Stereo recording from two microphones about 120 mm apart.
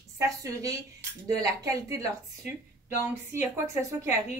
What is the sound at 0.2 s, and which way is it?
A woman's voice, 25° right (ahead or behind).